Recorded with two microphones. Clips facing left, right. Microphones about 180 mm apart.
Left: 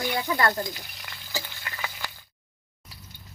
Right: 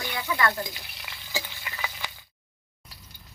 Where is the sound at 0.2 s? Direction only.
40° left (ahead or behind).